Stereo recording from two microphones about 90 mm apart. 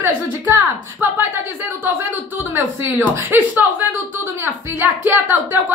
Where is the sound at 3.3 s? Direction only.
25° right (ahead or behind).